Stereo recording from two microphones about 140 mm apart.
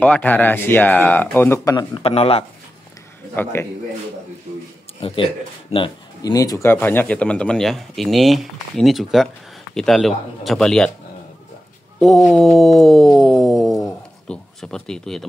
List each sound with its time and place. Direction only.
0.0 s speech: 10° left (ahead or behind)
2.0 s speech: 45° left (ahead or behind)
3.4 s speech: 15° left (ahead or behind)
5.0 s speech: 40° left (ahead or behind)
6.3 s speech: 25° left (ahead or behind); by 10.9 s 5° left (ahead or behind)
12.0 s a sound: centre (ahead or behind)